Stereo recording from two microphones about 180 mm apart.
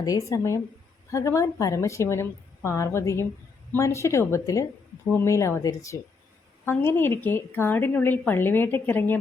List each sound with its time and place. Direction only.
0.0 s a woman's voice: 20° left (ahead or behind)